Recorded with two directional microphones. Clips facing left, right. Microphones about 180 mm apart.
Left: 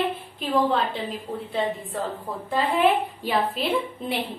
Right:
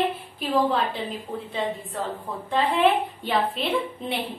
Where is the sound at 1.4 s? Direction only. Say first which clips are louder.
Left 3 dB; centre (ahead or behind).